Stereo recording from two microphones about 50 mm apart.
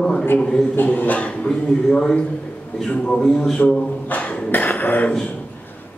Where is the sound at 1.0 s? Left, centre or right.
Left.